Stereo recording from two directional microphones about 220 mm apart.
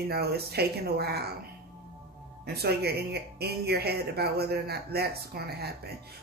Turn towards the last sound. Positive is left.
turn(degrees=-45)  # may be behind; listen again after turning